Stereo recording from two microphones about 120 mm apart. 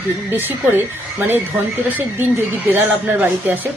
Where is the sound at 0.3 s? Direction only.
15° right (ahead or behind).